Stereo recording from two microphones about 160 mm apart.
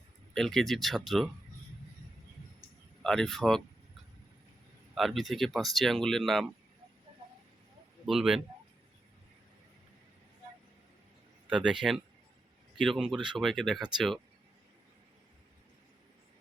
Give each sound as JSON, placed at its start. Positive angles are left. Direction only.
{"t": 0.3, "sound": "speech", "side_deg": 0}
{"t": 3.0, "sound": "speech", "side_deg": 5}
{"t": 4.9, "sound": "speech", "side_deg": 0}
{"t": 8.0, "sound": "speech", "side_deg": -5}
{"t": 11.4, "sound": "speech", "side_deg": -5}